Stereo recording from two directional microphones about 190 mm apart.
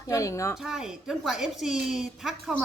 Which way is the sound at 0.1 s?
15° left (ahead or behind).